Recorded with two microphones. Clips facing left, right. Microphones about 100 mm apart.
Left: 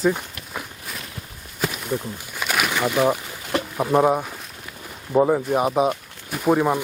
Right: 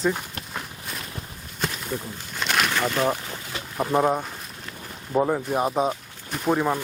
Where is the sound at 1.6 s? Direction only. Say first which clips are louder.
Left 4 dB; 5° left (ahead or behind).